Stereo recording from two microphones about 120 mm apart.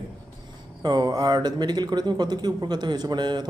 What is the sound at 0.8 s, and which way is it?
Speech, 35° right (ahead or behind).